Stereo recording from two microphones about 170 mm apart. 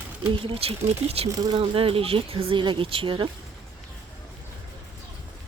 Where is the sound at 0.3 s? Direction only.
30° right (ahead or behind).